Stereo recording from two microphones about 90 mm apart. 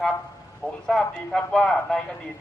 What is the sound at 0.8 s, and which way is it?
A man's voice, 5° left (ahead or behind).